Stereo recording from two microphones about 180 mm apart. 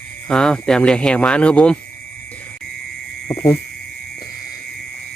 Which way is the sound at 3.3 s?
10° left (ahead or behind).